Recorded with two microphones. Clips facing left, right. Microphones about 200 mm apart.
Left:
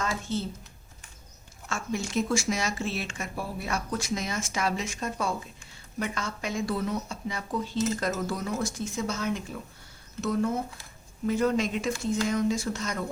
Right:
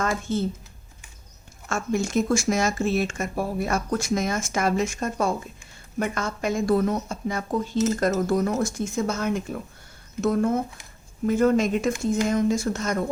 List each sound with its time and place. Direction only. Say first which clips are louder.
0.0 s speech: right 5 dB; 50° right (ahead or behind)
1.7 s speech: right 6 dB; 45° right (ahead or behind)